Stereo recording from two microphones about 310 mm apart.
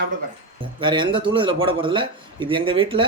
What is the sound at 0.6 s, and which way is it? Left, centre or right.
Speech, centre.